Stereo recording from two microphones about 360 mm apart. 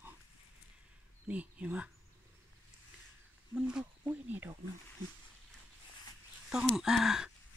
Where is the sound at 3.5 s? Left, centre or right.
Centre.